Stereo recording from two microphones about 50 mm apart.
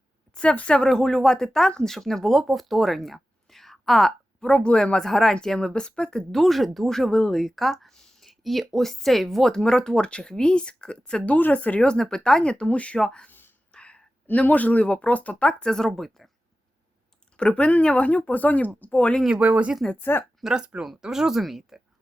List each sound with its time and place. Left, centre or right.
0.3 s speech: left
11.3 s a man's voice: left
11.9 s speech: centre
13.7 s a sound: left
14.3 s a man's voice: left; by 16.3 s centre
17.3 s speech: left
19.4 s speech: right
20.0 s speech: left
20.4 s speech: centre